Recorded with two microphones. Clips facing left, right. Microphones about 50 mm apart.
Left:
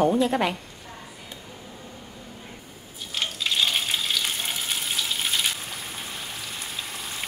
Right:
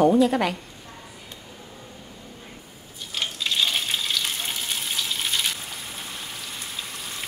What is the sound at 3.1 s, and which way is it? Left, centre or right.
Frying, centre.